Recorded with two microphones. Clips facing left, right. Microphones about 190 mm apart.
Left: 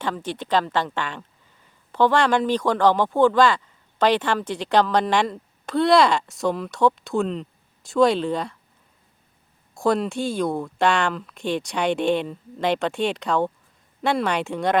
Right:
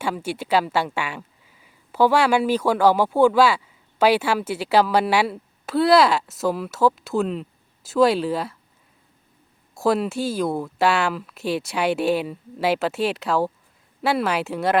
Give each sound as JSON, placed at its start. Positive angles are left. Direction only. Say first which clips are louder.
{"t": 0.0, "sound": "speech", "louder": "right 1 dB", "side_deg": -10}
{"t": 9.7, "sound": "speech", "louder": "right 1 dB", "side_deg": -5}